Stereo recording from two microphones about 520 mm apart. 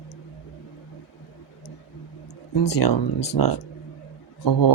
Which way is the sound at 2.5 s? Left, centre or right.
Left.